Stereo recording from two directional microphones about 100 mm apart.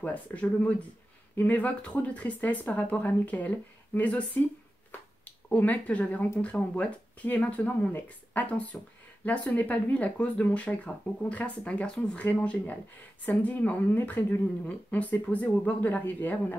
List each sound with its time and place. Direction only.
0.0 s a woman's voice: 15° left (ahead or behind)
4.9 s a sound: 15° left (ahead or behind)
6.4 s a woman's voice: 15° left (ahead or behind)